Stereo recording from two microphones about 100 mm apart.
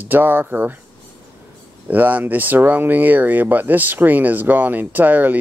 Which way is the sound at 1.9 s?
15° right (ahead or behind).